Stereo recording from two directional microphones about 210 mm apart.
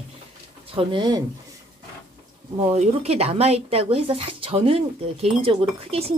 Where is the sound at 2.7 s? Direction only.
30° right (ahead or behind).